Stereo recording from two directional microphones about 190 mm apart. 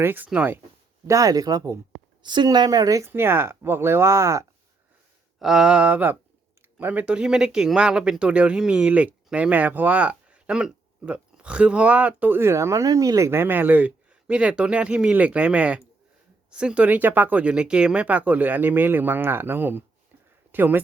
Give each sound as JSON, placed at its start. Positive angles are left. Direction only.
{"t": 0.0, "sound": "speech", "side_deg": -10}
{"t": 5.4, "sound": "speech", "side_deg": -5}